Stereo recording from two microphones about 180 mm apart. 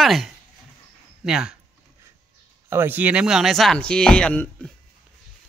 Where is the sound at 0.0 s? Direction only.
Centre (ahead or behind).